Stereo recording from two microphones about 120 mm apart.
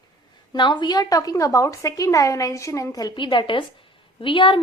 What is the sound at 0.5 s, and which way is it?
A woman's voice, 40° left (ahead or behind).